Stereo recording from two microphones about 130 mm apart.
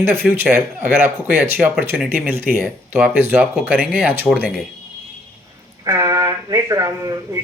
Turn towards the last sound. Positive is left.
turn(degrees=-25)  # may be behind; listen again after turning